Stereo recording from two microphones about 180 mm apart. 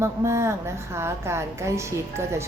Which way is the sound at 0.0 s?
15° right (ahead or behind).